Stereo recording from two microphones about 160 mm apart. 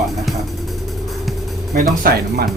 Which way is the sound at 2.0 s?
65° right (ahead or behind).